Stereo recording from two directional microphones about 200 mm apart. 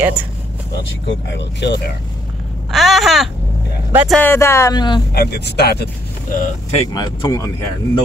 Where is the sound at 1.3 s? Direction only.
60° left (ahead or behind).